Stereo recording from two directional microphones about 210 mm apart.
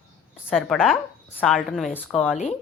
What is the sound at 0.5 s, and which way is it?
Speech, centre (ahead or behind).